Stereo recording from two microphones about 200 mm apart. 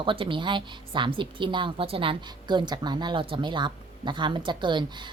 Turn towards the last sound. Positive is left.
turn(degrees=-25)  # may be behind; listen again after turning